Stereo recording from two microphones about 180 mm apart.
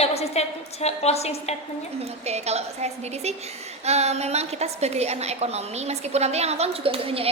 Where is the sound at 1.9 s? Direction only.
35° right (ahead or behind).